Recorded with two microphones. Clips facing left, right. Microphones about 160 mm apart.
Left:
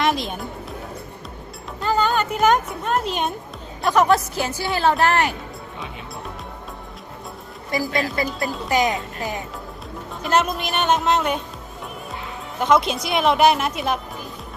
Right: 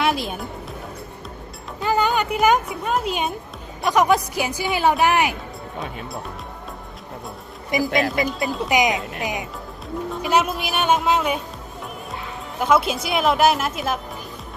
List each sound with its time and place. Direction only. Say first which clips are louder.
0.0 s music: even; 5° right (ahead or behind)
1.8 s a woman's voice: even; 15° right (ahead or behind)
7.7 s a woman's voice: right 2 dB; 20° right (ahead or behind)
8.4 s speech: right 3 dB; centre (ahead or behind)
8.7 s a woman's voice: even; 15° right (ahead or behind)
12.5 s speech: left 1 dB; 5° right (ahead or behind)